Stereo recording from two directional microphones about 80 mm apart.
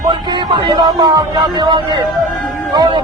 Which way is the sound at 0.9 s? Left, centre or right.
Right.